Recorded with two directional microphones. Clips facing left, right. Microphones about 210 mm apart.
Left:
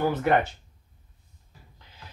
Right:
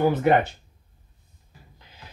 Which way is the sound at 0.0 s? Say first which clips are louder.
Right 4 dB; 20° right (ahead or behind).